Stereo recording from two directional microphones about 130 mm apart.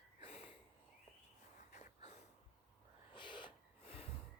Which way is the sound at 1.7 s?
80° left.